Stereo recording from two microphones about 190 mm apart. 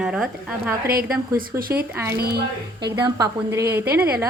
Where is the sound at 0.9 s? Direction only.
50° right (ahead or behind).